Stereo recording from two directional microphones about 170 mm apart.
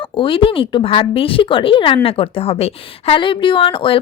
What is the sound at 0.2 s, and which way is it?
A woman's voice, 30° left (ahead or behind).